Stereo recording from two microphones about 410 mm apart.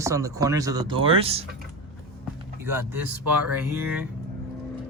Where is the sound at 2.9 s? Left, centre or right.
Right.